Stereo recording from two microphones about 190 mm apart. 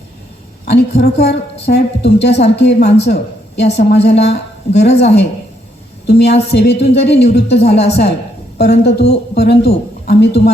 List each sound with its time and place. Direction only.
0.7 s speech: 55° left (ahead or behind)